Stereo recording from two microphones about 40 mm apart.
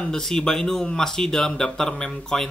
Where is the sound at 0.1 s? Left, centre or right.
Centre.